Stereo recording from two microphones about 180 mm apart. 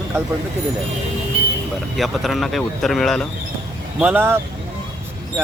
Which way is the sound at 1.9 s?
Centre (ahead or behind).